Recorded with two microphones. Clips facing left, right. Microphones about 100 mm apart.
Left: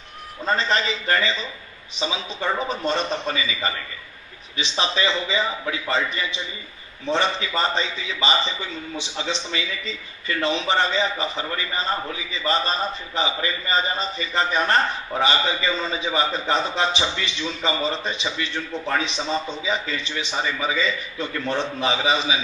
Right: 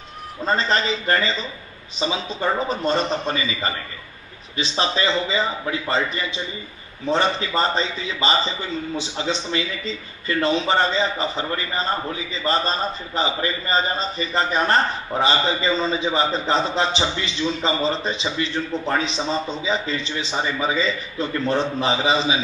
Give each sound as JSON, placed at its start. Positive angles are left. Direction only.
{"t": 0.5, "sound": "a man's voice", "side_deg": -35}
{"t": 13.1, "sound": "a man's voice", "side_deg": -35}